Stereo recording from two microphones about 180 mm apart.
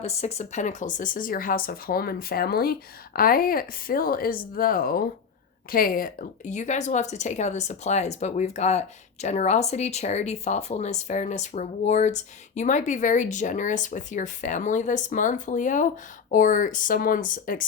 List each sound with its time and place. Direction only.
0.0 s a woman's voice: 35° left (ahead or behind)